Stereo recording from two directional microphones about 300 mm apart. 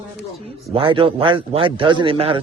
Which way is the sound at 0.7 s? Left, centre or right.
Centre.